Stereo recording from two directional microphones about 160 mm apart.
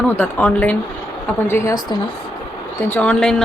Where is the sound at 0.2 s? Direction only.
10° left (ahead or behind).